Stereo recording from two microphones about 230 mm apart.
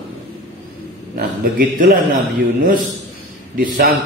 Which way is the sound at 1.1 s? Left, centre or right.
Right.